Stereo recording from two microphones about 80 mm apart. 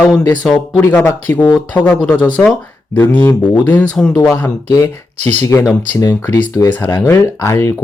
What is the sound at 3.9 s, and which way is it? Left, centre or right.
Speech, centre.